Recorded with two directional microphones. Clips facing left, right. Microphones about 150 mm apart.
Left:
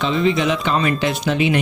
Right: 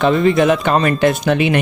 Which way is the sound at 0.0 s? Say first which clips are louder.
Right 5 dB; 55° right (ahead or behind).